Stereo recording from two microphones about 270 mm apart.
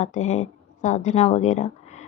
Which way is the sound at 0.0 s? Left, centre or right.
Left.